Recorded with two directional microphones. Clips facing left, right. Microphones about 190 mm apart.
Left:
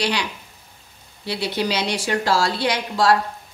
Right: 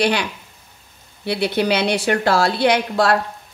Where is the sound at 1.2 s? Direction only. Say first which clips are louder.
Right 5 dB; 60° right (ahead or behind).